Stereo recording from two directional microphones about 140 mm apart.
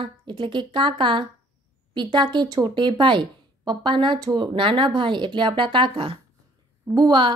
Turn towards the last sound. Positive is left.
turn(degrees=-30)  # may be behind; listen again after turning